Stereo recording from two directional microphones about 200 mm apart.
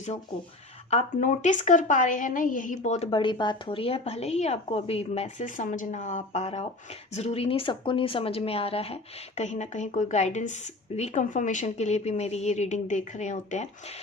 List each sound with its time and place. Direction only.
0.9 s a woman's voice: 35° left (ahead or behind)